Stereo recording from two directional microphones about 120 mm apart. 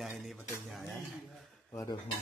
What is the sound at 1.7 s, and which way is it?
Speech, 25° left (ahead or behind).